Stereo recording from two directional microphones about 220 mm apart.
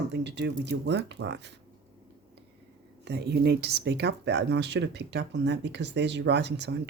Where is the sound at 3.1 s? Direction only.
50° right (ahead or behind).